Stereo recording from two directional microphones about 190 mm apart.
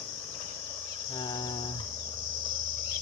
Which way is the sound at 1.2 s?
20° left (ahead or behind).